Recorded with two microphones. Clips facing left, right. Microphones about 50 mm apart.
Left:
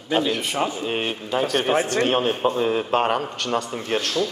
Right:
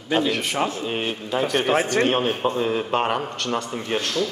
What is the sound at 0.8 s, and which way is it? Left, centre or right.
Speech, centre.